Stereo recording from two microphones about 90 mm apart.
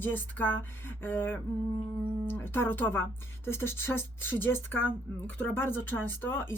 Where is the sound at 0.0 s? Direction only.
20° left (ahead or behind).